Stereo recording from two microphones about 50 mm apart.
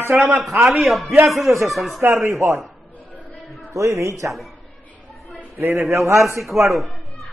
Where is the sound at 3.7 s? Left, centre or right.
Right.